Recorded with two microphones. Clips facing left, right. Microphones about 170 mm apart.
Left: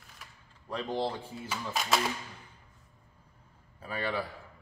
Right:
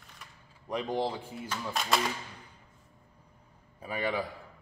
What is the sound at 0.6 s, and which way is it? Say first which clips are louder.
Speech: right 1 dB; 15° right (ahead or behind).